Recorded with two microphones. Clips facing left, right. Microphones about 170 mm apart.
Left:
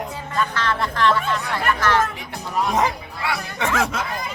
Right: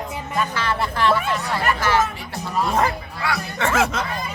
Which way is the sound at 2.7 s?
20° left (ahead or behind).